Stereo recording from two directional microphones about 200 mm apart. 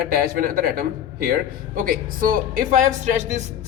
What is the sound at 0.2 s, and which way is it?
A man's voice, 45° right (ahead or behind).